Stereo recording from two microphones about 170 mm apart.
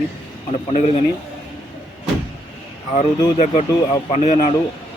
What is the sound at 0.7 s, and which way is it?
Speech, 35° left (ahead or behind).